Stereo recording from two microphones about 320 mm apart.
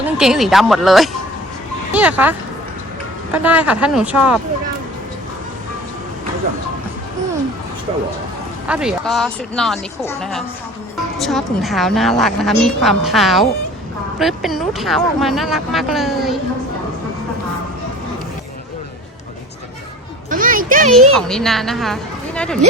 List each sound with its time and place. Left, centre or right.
0.0 s a woman's voice: centre
3.3 s a woman's voice: centre
8.6 s a woman's voice: centre
20.3 s music: right
21.1 s a woman's voice: centre